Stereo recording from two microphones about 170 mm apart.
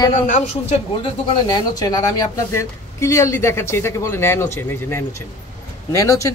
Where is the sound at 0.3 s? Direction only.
45° left (ahead or behind).